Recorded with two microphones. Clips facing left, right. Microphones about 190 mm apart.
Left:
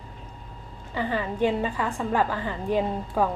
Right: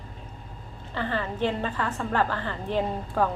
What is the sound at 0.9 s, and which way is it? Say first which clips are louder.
A woman's voice: left 2 dB; 10° left (ahead or behind).